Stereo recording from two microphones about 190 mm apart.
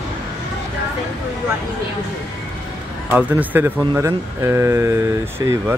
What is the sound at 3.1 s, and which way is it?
Speech, 10° right (ahead or behind).